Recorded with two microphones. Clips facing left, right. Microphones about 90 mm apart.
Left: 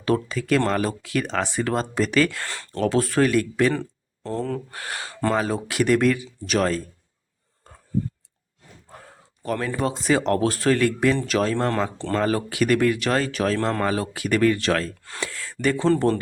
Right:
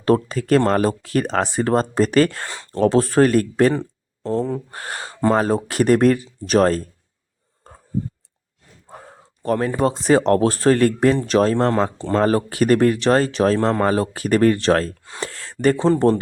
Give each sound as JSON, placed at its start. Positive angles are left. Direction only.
{"t": 0.0, "sound": "speech", "side_deg": -40}
{"t": 2.4, "sound": "speech", "side_deg": -20}
{"t": 2.8, "sound": "speech", "side_deg": -35}
{"t": 3.7, "sound": "speech", "side_deg": -20}
{"t": 4.7, "sound": "speech", "side_deg": -35}
{"t": 8.9, "sound": "a sound", "side_deg": -25}
{"t": 9.4, "sound": "speech", "side_deg": -35}
{"t": 11.7, "sound": "speech", "side_deg": -15}
{"t": 12.2, "sound": "speech", "side_deg": -35}
{"t": 13.6, "sound": "speech", "side_deg": -20}
{"t": 13.8, "sound": "speech", "side_deg": -40}
{"t": 15.2, "sound": "a sound", "side_deg": -35}
{"t": 15.8, "sound": "speech", "side_deg": -25}